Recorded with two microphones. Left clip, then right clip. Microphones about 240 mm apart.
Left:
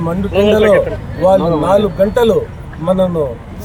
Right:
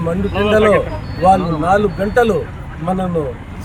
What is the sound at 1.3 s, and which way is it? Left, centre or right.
Speech, centre.